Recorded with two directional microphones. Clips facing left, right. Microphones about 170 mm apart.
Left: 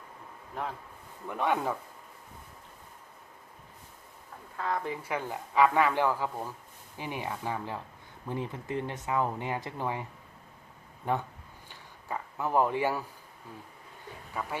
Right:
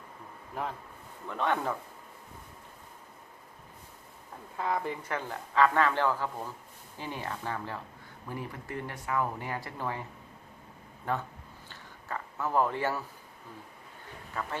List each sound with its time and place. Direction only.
0.6 s speech: 5° right (ahead or behind)
1.3 s speech: 10° left (ahead or behind)
4.5 s speech: 10° right (ahead or behind)
5.0 s speech: 10° left (ahead or behind)
11.1 s speech: 15° left (ahead or behind)
11.7 s a sound: 15° left (ahead or behind)
14.3 s speech: 10° left (ahead or behind)